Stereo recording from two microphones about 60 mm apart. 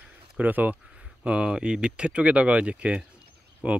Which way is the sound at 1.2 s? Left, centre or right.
Centre.